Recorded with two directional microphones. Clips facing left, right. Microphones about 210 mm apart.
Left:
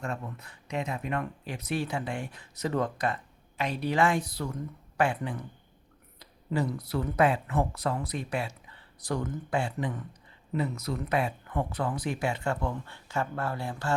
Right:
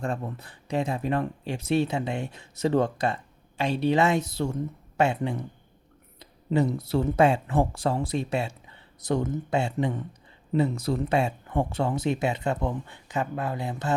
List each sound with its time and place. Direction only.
0.0 s speech: 30° right (ahead or behind)